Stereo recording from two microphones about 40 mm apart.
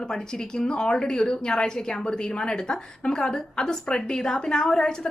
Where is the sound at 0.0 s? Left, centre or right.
Centre.